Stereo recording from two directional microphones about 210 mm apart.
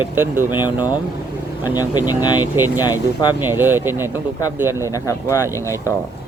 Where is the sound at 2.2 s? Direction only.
20° left (ahead or behind).